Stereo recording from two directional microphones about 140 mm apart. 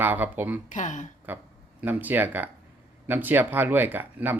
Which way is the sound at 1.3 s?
10° right (ahead or behind).